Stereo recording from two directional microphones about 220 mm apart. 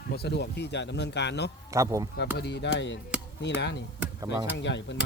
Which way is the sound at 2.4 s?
50° left (ahead or behind).